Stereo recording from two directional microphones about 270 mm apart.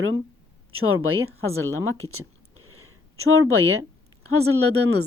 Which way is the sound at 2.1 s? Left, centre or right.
Right.